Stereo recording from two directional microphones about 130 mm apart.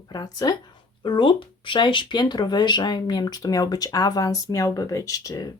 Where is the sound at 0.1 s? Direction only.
30° left (ahead or behind).